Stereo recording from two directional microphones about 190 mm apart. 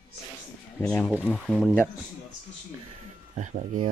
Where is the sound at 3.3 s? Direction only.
40° right (ahead or behind).